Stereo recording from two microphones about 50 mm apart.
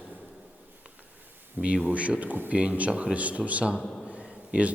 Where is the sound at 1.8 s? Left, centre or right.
Right.